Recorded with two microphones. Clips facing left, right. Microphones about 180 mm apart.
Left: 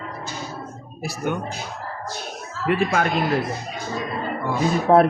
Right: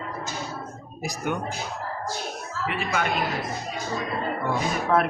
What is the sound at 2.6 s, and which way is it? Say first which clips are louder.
Speech: left 7 dB; 50° left (ahead or behind).